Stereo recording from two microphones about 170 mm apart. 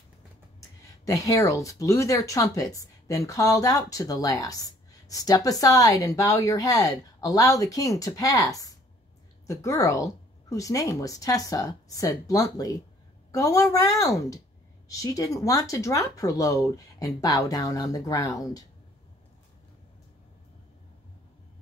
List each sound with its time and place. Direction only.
1.0 s speech: 20° left (ahead or behind)